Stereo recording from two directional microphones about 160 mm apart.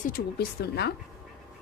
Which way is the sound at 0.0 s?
75° left (ahead or behind).